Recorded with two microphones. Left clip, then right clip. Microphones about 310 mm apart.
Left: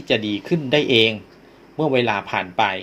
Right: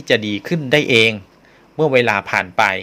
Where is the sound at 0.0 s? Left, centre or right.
Right.